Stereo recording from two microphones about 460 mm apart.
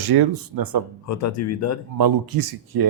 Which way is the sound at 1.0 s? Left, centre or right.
Left.